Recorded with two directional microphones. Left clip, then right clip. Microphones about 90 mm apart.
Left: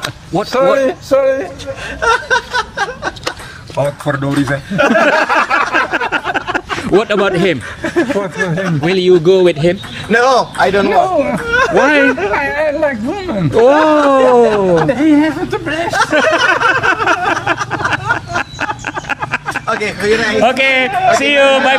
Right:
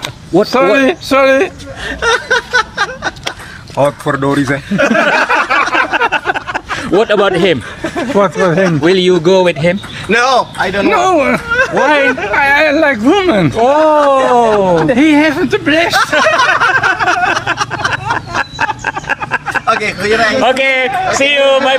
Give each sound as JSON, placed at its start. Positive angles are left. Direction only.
{"t": 0.6, "sound": "a man's voice", "side_deg": 20}
{"t": 2.0, "sound": "a sound", "side_deg": 5}
{"t": 4.2, "sound": "a man's voice", "side_deg": 10}
{"t": 4.7, "sound": "a sound", "side_deg": 0}
{"t": 8.2, "sound": "a man's voice", "side_deg": 10}
{"t": 10.9, "sound": "a man's voice", "side_deg": 15}
{"t": 11.5, "sound": "speech", "side_deg": -5}
{"t": 12.4, "sound": "speech", "side_deg": 15}
{"t": 13.2, "sound": "speech", "side_deg": 35}
{"t": 13.6, "sound": "a man's voice", "side_deg": 5}
{"t": 16.2, "sound": "a sound", "side_deg": 10}
{"t": 19.7, "sound": "a sound", "side_deg": 20}
{"t": 20.1, "sound": "a man's voice", "side_deg": 15}